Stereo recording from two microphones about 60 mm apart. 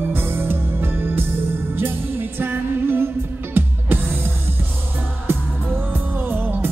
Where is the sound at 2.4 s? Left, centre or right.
Right.